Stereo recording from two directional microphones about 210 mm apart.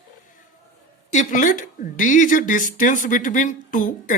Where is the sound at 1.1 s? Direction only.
35° left (ahead or behind).